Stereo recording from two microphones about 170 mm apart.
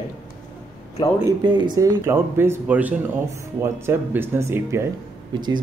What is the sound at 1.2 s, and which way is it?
Speech, 25° right (ahead or behind).